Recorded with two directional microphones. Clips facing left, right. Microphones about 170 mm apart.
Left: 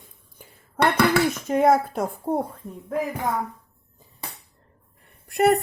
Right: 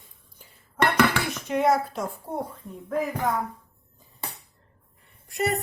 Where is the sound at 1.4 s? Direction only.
50° left (ahead or behind).